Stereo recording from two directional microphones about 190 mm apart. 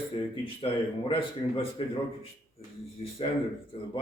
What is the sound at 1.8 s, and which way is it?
Speech, 30° left (ahead or behind).